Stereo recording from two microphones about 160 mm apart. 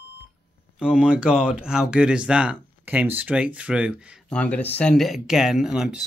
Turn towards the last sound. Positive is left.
turn(degrees=-5)  # may be behind; listen again after turning